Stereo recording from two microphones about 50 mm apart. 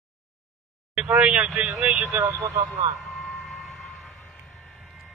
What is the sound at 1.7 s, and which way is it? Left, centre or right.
Speech, centre.